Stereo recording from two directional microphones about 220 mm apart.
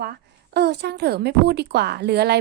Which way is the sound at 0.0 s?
45° right (ahead or behind).